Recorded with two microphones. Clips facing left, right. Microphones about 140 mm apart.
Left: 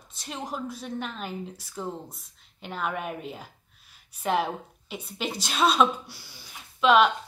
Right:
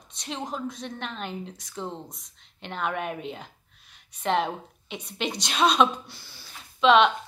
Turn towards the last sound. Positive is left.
turn(degrees=5)  # may be behind; listen again after turning